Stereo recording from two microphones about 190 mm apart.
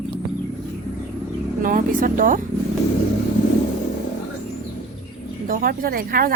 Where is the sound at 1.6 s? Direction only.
45° right (ahead or behind).